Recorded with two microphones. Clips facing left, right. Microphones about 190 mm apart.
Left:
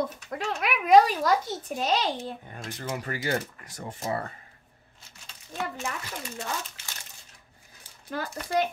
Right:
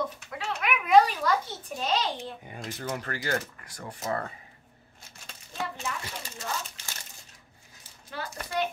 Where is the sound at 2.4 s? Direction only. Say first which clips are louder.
Right 1 dB; 5° right (ahead or behind).